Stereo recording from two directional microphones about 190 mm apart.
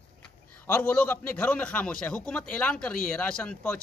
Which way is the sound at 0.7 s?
10° left (ahead or behind).